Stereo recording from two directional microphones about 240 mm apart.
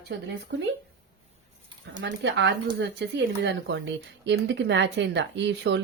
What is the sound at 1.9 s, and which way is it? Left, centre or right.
Speech, right.